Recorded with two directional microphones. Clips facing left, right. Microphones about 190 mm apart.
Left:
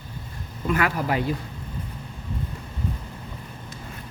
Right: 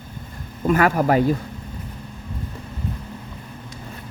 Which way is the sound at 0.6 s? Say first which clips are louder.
Right 6 dB; 45° right (ahead or behind).